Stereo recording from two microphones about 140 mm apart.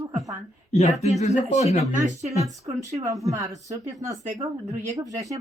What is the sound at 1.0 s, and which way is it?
Speech, 55° left (ahead or behind).